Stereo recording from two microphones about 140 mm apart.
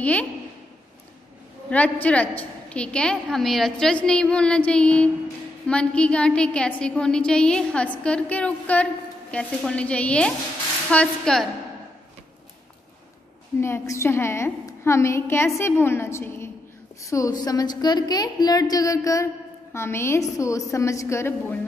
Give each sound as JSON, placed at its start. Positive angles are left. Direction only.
{"t": 0.0, "sound": "a woman's voice", "side_deg": 10}
{"t": 1.7, "sound": "a woman's voice", "side_deg": 10}
{"t": 13.6, "sound": "a woman's voice", "side_deg": 20}